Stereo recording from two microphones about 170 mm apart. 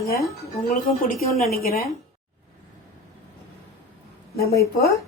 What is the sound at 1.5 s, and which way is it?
Speech, 60° left (ahead or behind).